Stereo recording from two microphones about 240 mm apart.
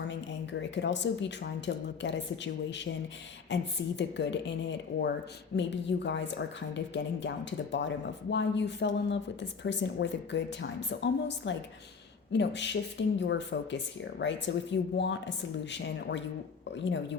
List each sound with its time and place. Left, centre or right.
0.7 s speech: left
5.5 s speech: left